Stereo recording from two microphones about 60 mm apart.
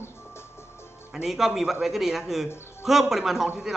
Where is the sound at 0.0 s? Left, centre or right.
Left.